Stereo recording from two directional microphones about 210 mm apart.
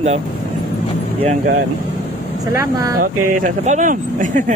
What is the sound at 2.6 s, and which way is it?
Speech, 15° right (ahead or behind).